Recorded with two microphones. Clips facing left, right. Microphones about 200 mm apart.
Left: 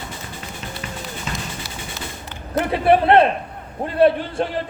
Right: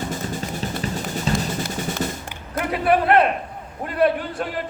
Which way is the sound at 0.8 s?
35° right (ahead or behind).